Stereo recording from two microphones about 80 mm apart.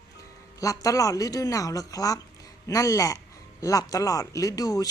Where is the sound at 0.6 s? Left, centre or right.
Left.